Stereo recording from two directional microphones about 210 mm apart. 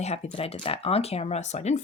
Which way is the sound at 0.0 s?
30° left (ahead or behind).